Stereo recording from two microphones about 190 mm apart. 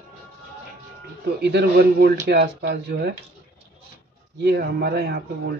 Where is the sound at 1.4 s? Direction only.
60° right (ahead or behind).